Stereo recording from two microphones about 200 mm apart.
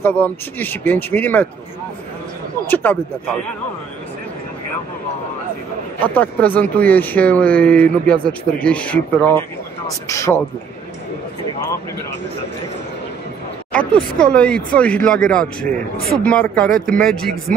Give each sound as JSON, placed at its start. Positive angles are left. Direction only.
{"t": 0.0, "sound": "speech", "side_deg": 10}
{"t": 2.6, "sound": "speech", "side_deg": 10}
{"t": 6.0, "sound": "speech", "side_deg": 10}
{"t": 13.7, "sound": "speech", "side_deg": 5}